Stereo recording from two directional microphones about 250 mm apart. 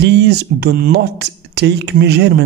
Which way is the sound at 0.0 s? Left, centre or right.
Right.